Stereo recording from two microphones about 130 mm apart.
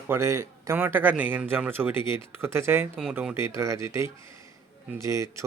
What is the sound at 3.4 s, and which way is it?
Speech, 20° right (ahead or behind).